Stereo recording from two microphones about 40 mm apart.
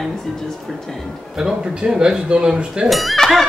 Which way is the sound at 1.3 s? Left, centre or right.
Centre.